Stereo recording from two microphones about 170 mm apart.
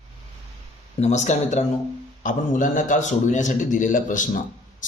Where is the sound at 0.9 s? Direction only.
40° left (ahead or behind).